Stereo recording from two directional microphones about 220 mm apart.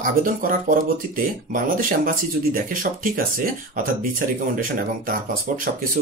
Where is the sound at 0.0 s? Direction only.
40° right (ahead or behind).